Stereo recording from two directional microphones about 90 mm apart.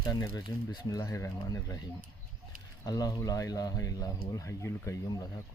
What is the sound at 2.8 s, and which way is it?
Speech, 45° left (ahead or behind).